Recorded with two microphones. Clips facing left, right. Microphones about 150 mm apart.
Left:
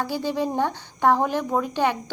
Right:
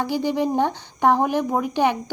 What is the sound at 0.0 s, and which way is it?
Speech, 15° right (ahead or behind).